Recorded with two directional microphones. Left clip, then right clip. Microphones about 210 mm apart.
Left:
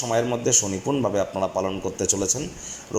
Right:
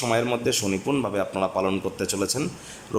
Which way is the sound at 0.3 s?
10° right (ahead or behind).